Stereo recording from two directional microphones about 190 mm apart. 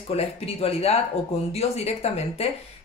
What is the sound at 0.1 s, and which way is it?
Speech, 30° left (ahead or behind).